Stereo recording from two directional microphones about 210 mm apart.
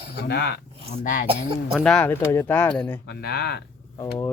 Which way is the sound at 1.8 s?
5° left (ahead or behind).